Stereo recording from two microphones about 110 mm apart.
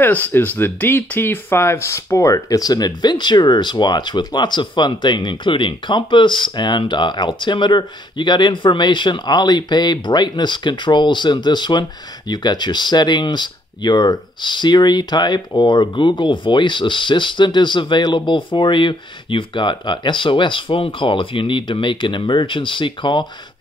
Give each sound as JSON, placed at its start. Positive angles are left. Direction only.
{"t": 0.0, "sound": "speech", "side_deg": 15}